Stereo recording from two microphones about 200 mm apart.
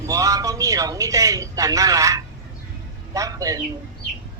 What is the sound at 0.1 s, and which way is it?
A man's voice, 15° right (ahead or behind).